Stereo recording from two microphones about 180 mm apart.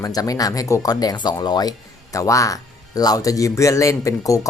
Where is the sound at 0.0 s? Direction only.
20° left (ahead or behind).